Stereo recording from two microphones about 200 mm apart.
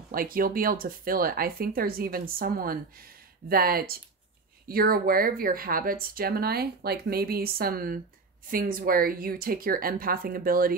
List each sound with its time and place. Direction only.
0.1 s speech: 45° right (ahead or behind)